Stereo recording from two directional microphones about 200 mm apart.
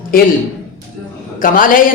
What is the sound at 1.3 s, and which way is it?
Speech, 45° left (ahead or behind).